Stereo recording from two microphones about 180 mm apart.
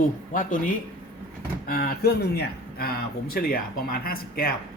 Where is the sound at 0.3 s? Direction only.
50° left (ahead or behind).